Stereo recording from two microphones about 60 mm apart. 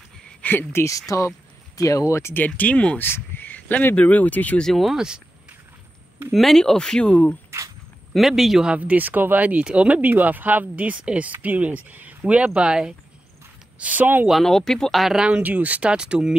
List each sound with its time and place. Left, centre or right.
0.4 s speech: left
1.1 s speech: left
2.3 s speech: left
3.0 s crow: left
3.9 s speech: left
4.6 s speech: centre
4.9 s speech: centre
6.3 s speech: centre; by 7.3 s left
8.1 s speech: centre
8.6 s speech: right
13.7 s speech: right
14.3 s speech: centre
15.1 s speech: centre